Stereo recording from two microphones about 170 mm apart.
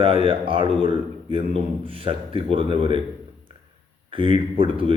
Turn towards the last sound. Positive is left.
turn(degrees=-30)  # may be behind; listen again after turning